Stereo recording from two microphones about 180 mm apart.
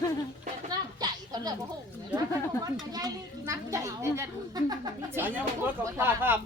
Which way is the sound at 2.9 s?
20° right (ahead or behind).